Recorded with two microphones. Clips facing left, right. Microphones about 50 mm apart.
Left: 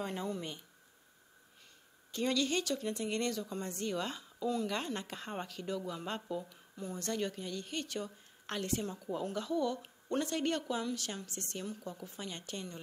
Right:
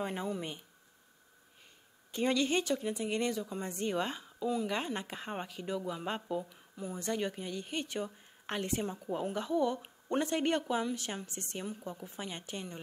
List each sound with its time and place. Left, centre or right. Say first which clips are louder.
0.0 s a woman's voice: right 2 dB; centre
2.1 s a woman's voice: right 3 dB; right
2.8 s a woman's voice: right 2 dB; centre